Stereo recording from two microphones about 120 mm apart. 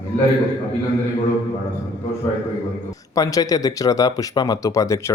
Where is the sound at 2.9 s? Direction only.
30° left (ahead or behind).